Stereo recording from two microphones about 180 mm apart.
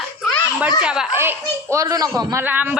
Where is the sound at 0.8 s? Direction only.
5° right (ahead or behind).